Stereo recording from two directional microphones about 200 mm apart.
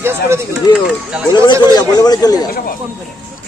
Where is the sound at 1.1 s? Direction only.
5° right (ahead or behind).